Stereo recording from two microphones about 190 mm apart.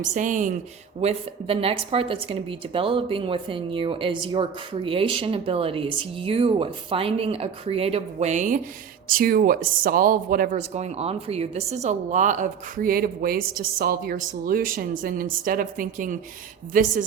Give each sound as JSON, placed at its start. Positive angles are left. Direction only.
{"t": 0.0, "sound": "speech", "side_deg": -40}
{"t": 1.0, "sound": "a woman's voice", "side_deg": -30}
{"t": 10.8, "sound": "a woman's voice", "side_deg": -35}